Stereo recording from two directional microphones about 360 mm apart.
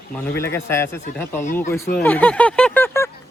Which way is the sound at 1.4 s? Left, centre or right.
Left.